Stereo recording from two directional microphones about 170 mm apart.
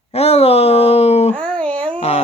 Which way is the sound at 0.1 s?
40° left (ahead or behind).